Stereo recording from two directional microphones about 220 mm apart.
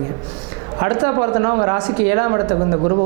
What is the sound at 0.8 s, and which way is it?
Speech, 20° right (ahead or behind).